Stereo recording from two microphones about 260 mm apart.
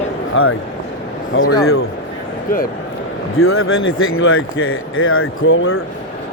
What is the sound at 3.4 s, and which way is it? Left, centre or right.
Speech, left.